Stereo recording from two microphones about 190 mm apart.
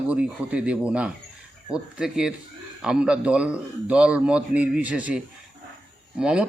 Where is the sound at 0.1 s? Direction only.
5° right (ahead or behind).